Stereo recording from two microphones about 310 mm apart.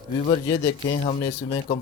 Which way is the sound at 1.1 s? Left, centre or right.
Centre.